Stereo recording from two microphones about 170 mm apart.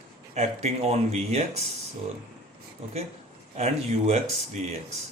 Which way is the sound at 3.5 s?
40° right (ahead or behind).